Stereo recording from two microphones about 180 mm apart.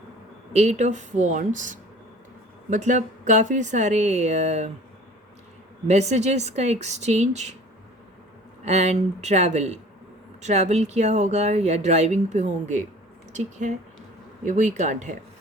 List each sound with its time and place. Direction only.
0.5 s speech: 40° right (ahead or behind)
5.9 s speech: 40° right (ahead or behind)
8.6 s speech: 40° right (ahead or behind)